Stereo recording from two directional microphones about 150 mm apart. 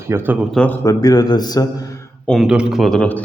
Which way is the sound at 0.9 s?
25° left (ahead or behind).